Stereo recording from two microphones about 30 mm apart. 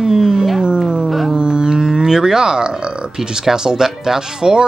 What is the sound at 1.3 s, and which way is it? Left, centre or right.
Speech, right.